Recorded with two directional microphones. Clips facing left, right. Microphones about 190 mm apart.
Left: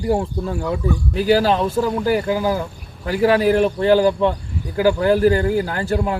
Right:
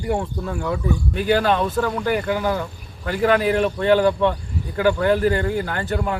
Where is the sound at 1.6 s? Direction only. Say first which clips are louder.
Left 2 dB; 5° left (ahead or behind).